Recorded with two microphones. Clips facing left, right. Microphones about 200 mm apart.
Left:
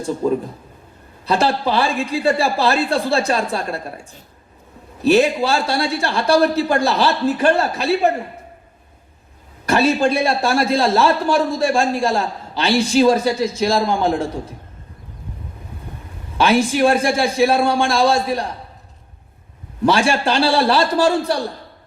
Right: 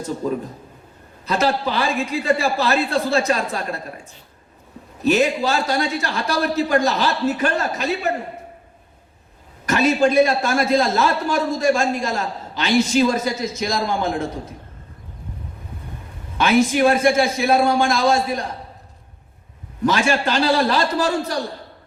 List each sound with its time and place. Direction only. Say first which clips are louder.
1.2 s a man's voice: left 2 dB; 30° left (ahead or behind)
5.0 s a man's voice: left 3 dB; 30° left (ahead or behind)
9.6 s a man's voice: left 1 dB; 30° left (ahead or behind)
16.4 s a man's voice: left 1 dB; 30° left (ahead or behind)
19.8 s a man's voice: left 2 dB; 35° left (ahead or behind)